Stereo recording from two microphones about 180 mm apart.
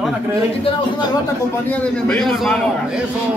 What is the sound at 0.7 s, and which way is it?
Speech, 30° left (ahead or behind).